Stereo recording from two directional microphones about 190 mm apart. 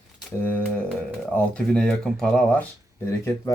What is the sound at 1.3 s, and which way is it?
Speech, 5° left (ahead or behind).